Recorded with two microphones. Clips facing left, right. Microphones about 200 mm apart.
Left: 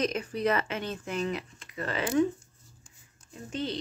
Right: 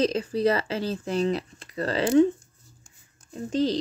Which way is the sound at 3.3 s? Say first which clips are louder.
Right 9 dB; 35° right (ahead or behind).